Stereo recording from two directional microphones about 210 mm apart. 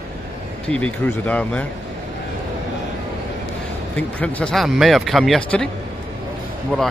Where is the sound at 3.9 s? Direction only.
5° left (ahead or behind).